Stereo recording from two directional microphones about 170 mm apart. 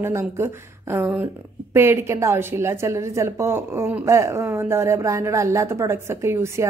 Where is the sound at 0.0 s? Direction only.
15° right (ahead or behind).